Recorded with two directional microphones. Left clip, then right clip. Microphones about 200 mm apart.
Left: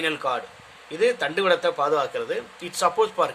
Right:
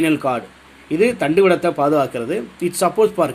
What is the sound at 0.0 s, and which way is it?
Speech, 20° right (ahead or behind).